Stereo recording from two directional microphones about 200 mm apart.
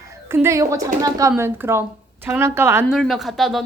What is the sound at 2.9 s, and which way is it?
Speech, centre (ahead or behind).